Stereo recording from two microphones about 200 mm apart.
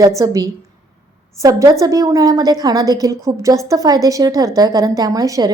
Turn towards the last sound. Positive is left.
turn(degrees=-15)  # may be behind; listen again after turning